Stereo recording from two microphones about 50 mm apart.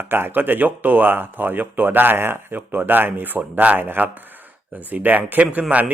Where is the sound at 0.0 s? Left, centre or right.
Right.